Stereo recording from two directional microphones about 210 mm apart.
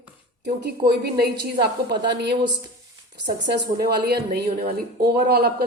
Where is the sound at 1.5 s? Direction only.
20° right (ahead or behind).